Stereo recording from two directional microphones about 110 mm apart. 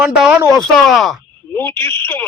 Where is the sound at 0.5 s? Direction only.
Centre (ahead or behind).